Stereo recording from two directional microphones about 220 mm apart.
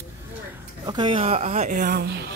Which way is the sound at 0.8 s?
20° right (ahead or behind).